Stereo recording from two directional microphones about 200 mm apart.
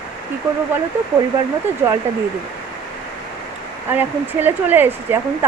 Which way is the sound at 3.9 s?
10° right (ahead or behind).